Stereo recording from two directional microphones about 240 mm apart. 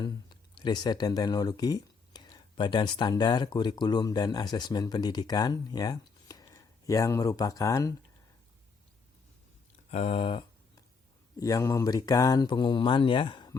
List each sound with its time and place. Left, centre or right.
0.0 s speech: centre
9.9 s speech: left